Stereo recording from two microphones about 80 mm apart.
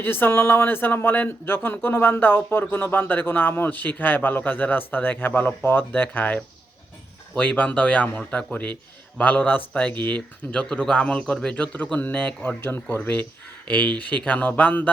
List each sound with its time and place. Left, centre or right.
0.0 s speech: left